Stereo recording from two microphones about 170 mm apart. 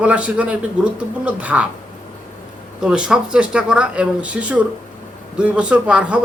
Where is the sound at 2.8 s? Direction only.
5° right (ahead or behind).